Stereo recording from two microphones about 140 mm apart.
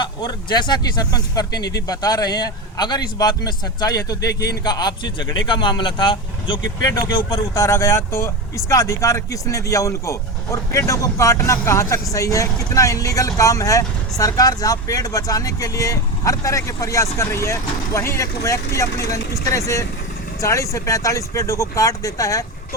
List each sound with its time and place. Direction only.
0.0 s speech: 35° left (ahead or behind)